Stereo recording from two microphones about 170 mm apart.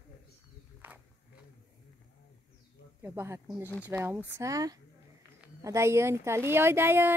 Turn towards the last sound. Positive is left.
turn(degrees=-15)  # may be behind; listen again after turning